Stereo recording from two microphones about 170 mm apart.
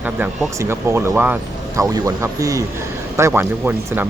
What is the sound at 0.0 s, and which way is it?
Speech, 10° right (ahead or behind).